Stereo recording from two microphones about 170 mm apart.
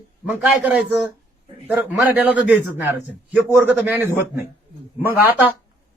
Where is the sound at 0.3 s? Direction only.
5° right (ahead or behind).